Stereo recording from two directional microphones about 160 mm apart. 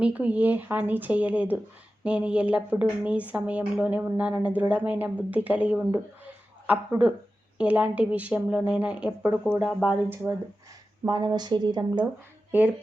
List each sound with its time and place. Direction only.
0.0 s speech: 10° right (ahead or behind)
11.0 s speech: 25° right (ahead or behind)
12.5 s speech: 10° right (ahead or behind)